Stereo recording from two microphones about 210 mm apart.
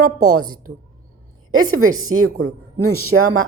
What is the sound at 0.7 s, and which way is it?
Speech, 60° right (ahead or behind).